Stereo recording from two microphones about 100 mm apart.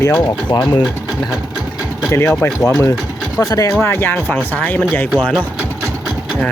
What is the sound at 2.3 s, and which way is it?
Speech, 10° left (ahead or behind).